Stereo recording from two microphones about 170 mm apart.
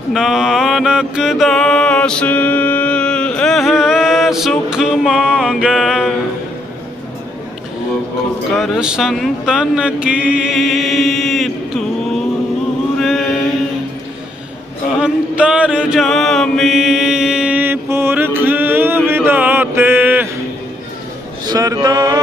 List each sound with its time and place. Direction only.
0.1 s mantra: centre (ahead or behind)
8.5 s speech: centre (ahead or behind)
15.0 s chant: 5° right (ahead or behind)
21.5 s speech: 25° right (ahead or behind)